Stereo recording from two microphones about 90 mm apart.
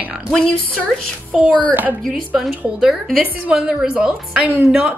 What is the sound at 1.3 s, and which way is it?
Speech, centre (ahead or behind).